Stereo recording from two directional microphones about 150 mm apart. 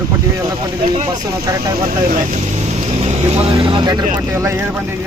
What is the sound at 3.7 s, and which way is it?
Speech, 30° right (ahead or behind).